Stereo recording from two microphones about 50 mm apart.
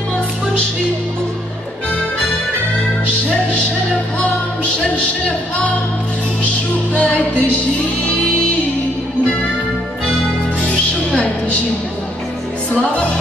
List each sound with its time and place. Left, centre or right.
6.9 s music: left
11.1 s music: left